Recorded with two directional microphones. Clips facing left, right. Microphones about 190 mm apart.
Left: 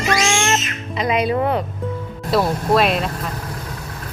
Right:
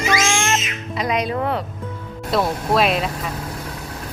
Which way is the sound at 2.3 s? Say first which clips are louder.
Left 2 dB; centre (ahead or behind).